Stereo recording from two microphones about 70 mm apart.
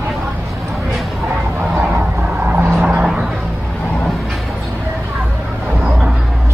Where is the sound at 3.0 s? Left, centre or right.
Centre.